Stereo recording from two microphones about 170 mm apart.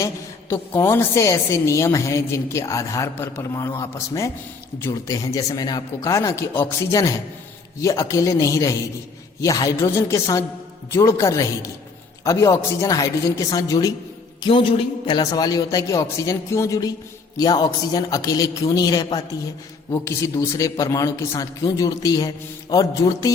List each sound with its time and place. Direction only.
0.5 s a woman's voice: 15° left (ahead or behind)